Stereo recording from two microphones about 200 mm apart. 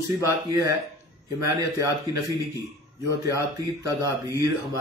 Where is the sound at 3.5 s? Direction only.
15° right (ahead or behind).